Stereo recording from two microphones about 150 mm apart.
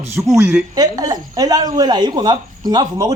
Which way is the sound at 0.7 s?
25° right (ahead or behind).